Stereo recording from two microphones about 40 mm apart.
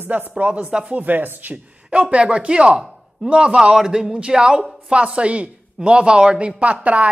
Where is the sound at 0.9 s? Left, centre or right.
Right.